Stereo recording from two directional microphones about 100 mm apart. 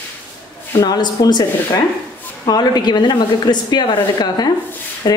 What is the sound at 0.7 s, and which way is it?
Speech, 45° left (ahead or behind).